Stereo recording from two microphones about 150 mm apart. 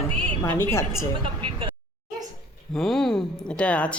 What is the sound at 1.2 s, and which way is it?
Speech, 35° right (ahead or behind).